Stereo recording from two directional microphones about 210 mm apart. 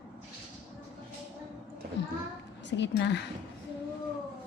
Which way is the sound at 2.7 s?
55° left (ahead or behind).